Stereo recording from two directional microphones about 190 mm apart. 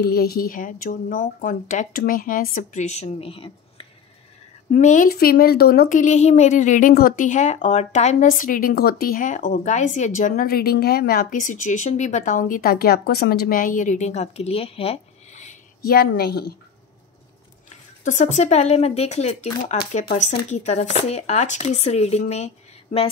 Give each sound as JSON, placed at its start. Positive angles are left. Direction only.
{"t": 0.0, "sound": "a woman's voice", "side_deg": 55}
{"t": 4.6, "sound": "a woman's voice", "side_deg": 45}
{"t": 15.8, "sound": "a woman's voice", "side_deg": 55}
{"t": 18.0, "sound": "speech", "side_deg": 40}